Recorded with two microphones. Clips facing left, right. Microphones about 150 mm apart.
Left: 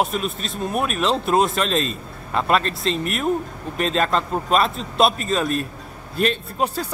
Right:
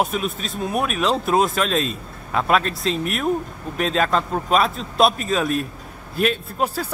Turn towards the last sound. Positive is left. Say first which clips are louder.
# even
turn(degrees=-5)  # may be behind; listen again after turning